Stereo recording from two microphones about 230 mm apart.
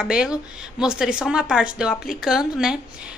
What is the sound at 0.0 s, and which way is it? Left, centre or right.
A woman's voice, centre.